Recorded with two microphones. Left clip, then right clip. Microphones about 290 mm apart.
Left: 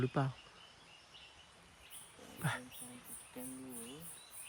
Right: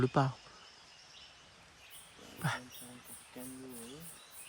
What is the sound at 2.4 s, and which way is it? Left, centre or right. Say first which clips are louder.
Speech: right 3 dB; centre.